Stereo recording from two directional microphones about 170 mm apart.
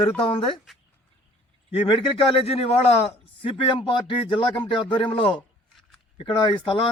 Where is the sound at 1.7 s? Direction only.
35° left (ahead or behind).